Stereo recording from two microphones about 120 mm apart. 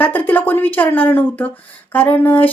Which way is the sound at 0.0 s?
15° left (ahead or behind).